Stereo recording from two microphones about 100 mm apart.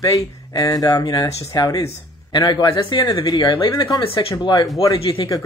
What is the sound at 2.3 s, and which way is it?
Speech, 50° left (ahead or behind).